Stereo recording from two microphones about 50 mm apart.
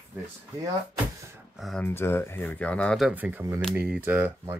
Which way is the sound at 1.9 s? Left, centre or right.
Left.